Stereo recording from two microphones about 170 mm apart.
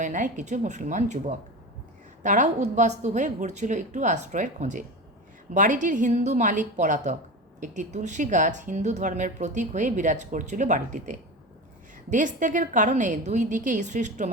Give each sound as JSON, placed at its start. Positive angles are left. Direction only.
{"t": 0.0, "sound": "a woman's voice", "side_deg": -45}